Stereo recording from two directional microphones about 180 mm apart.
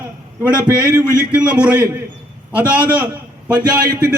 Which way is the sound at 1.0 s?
5° right (ahead or behind).